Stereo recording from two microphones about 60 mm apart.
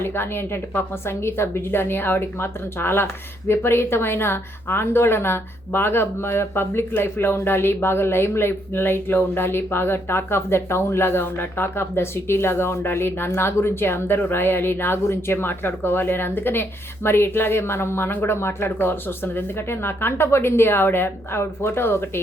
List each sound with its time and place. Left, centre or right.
0.0 s speech: left